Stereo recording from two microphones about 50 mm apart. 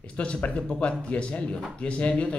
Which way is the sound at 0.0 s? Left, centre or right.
Left.